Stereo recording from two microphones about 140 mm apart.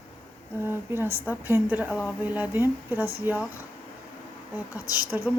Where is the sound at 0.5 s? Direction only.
15° right (ahead or behind).